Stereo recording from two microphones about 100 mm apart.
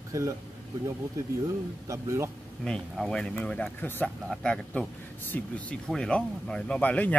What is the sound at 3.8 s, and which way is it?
Speech, 20° left (ahead or behind).